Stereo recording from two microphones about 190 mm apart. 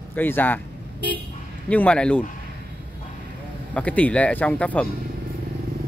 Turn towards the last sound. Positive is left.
turn(degrees=5)  # may be behind; listen again after turning